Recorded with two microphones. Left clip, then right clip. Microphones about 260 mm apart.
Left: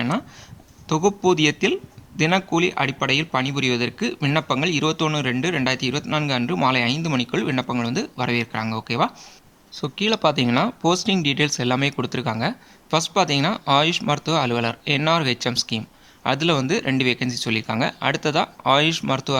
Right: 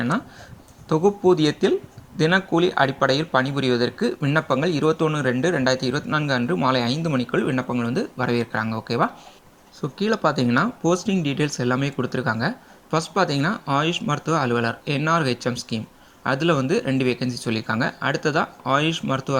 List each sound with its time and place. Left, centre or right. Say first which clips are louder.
0.9 s speech: right 1 dB; centre